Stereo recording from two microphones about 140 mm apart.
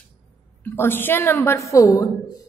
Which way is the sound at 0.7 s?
15° left (ahead or behind).